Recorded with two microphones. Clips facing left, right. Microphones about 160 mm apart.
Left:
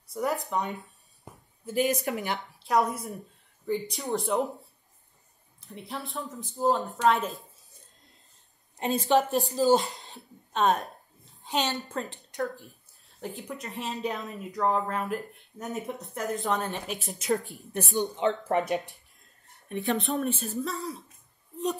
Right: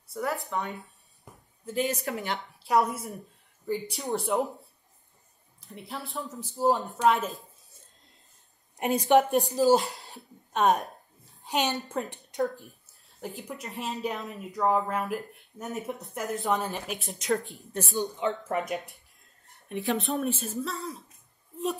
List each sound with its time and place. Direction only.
0.1 s speech: 20° left (ahead or behind)
2.1 s speech: centre (ahead or behind)
8.7 s a woman's voice: 15° right (ahead or behind)
9.8 s speech: centre (ahead or behind)
10.5 s a woman's voice: 15° right (ahead or behind)
13.2 s speech: centre (ahead or behind)
17.6 s speech: 20° left (ahead or behind)
18.7 s speech: centre (ahead or behind)